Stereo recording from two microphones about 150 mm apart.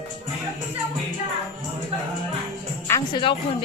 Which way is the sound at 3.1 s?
35° left (ahead or behind).